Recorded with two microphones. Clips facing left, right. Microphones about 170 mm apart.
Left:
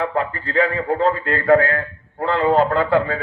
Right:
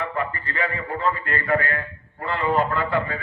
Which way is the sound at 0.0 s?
90° left.